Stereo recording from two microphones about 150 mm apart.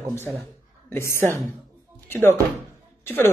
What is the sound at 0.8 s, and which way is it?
Speech, 15° left (ahead or behind).